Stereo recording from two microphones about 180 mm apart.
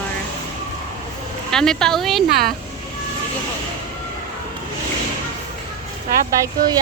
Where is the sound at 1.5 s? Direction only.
5° left (ahead or behind).